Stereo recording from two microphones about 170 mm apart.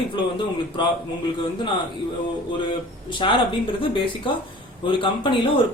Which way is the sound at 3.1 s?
30° left (ahead or behind).